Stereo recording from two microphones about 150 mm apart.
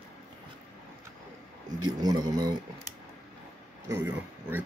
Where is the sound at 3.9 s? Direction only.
15° right (ahead or behind).